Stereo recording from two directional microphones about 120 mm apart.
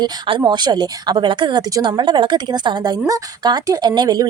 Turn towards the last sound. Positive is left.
turn(degrees=-35)  # may be behind; listen again after turning